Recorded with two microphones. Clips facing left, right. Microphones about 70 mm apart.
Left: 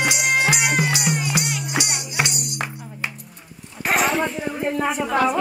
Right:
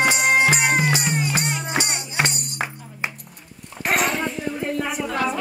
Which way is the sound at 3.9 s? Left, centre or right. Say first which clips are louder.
Left 2 dB; centre.